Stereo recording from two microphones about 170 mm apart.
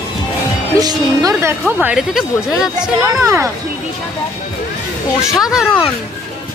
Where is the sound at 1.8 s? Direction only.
5° right (ahead or behind).